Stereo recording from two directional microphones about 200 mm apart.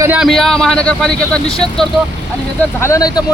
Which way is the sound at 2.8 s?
15° left (ahead or behind).